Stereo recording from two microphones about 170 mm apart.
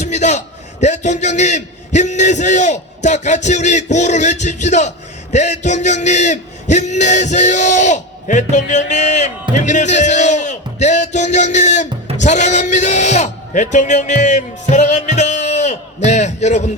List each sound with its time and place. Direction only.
0.0 s a man's voice: 45° left (ahead or behind)